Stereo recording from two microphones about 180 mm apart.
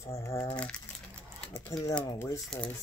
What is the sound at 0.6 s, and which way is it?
Crumpling, 5° left (ahead or behind).